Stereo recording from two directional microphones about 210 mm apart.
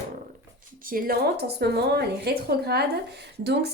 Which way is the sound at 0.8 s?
40° right (ahead or behind).